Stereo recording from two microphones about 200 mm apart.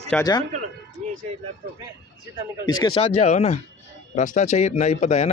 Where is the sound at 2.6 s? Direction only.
20° left (ahead or behind).